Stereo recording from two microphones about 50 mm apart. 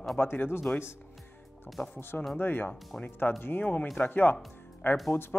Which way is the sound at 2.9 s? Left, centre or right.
Left.